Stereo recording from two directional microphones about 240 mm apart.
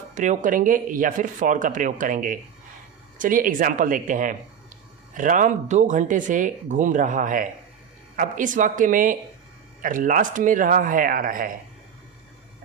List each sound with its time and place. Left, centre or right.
0.1 s speech: right